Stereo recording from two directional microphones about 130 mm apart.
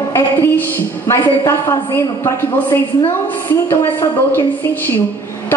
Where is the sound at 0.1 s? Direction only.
20° left (ahead or behind).